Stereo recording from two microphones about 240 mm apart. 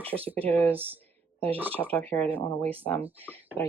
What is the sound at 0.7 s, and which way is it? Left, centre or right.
Speech, centre.